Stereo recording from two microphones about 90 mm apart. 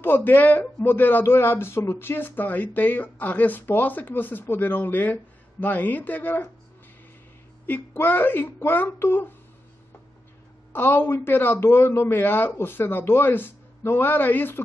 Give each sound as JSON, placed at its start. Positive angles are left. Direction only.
{"t": 0.0, "sound": "speech", "side_deg": 20}
{"t": 7.6, "sound": "speech", "side_deg": 20}
{"t": 10.7, "sound": "speech", "side_deg": 25}